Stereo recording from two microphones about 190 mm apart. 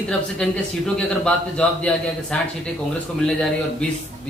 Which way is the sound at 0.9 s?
5° left (ahead or behind).